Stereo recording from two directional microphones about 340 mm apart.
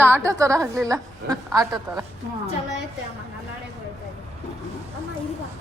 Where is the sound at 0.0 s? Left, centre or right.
Centre.